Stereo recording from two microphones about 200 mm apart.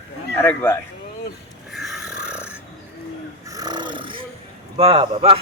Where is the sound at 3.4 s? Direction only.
20° right (ahead or behind).